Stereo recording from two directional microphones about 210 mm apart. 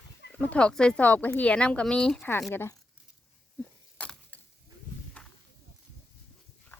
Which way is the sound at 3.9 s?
5° left (ahead or behind).